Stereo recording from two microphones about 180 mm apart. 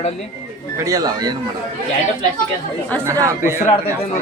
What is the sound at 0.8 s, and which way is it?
Speech, 20° right (ahead or behind).